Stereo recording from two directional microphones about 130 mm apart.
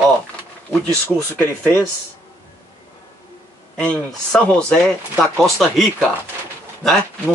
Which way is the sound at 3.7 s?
10° left (ahead or behind).